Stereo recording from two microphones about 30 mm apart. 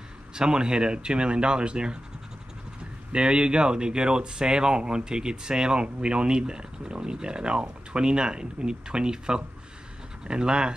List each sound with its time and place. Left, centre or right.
0.3 s speech: right
3.1 s speech: right